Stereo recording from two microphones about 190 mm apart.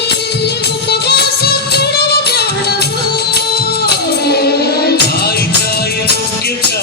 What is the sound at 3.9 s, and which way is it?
Music, 55° left (ahead or behind).